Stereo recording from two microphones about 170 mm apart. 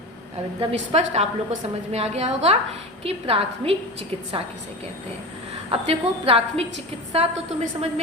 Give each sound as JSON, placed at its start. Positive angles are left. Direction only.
{"t": 0.6, "sound": "a woman's voice", "side_deg": -40}
{"t": 5.7, "sound": "a woman's voice", "side_deg": -35}